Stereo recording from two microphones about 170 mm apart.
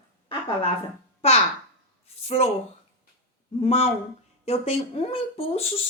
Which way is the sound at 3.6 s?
35° left (ahead or behind).